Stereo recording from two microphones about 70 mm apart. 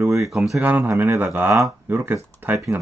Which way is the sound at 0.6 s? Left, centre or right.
Right.